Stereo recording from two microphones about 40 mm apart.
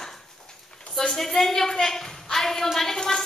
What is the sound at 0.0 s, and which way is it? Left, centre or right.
Dog, centre.